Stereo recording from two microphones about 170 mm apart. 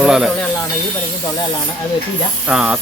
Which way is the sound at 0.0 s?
5° right (ahead or behind).